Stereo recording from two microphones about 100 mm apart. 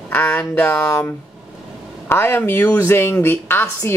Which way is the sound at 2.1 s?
25° left (ahead or behind).